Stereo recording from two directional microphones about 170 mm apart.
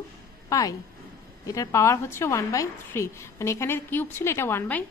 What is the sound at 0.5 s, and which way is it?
A woman's voice, 20° left (ahead or behind).